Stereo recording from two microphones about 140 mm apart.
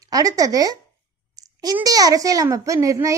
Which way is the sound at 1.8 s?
25° right (ahead or behind).